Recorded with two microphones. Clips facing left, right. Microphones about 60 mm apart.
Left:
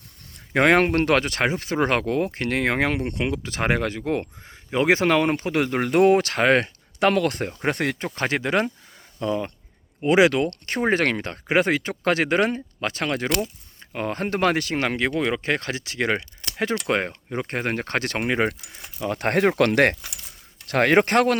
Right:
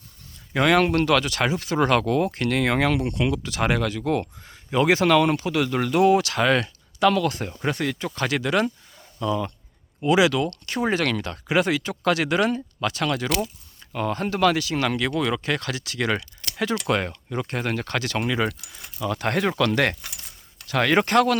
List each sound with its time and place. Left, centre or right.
0.3 s speech: left
8.0 s speech: left
14.8 s speech: left